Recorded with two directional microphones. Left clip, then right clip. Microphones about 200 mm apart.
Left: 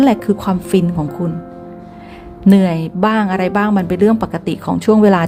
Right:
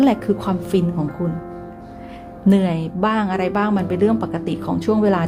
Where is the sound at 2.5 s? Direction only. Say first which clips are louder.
Left 5 dB; 15° left (ahead or behind).